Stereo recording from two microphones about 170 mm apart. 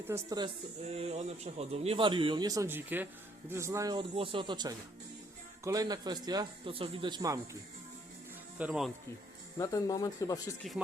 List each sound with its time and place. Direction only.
0.1 s a man's voice: 25° right (ahead or behind)
0.9 s a man's voice: 40° right (ahead or behind)
8.5 s speech: 5° right (ahead or behind)
9.6 s speech: 20° left (ahead or behind)